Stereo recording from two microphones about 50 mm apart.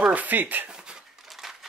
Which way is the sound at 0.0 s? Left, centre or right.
Right.